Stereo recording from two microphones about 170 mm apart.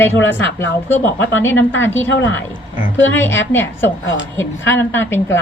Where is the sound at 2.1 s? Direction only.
90° left.